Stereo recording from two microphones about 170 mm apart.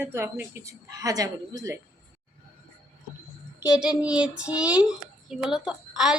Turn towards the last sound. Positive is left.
turn(degrees=-5)  # may be behind; listen again after turning